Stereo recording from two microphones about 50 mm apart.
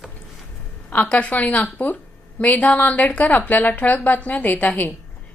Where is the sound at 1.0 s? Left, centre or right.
Left.